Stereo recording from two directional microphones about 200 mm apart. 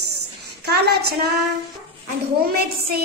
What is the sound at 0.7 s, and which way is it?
Speech, 55° right (ahead or behind).